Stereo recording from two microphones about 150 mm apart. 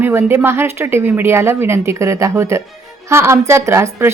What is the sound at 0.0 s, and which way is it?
A woman's voice, 15° right (ahead or behind).